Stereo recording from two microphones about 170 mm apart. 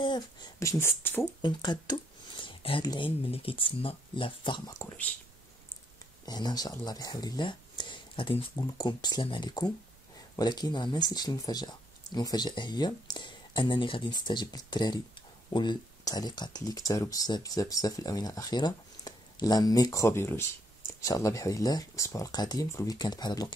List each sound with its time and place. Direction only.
0.0 s speech: 25° left (ahead or behind)
1.4 s speech: 25° left (ahead or behind)
6.2 s speech: 25° left (ahead or behind)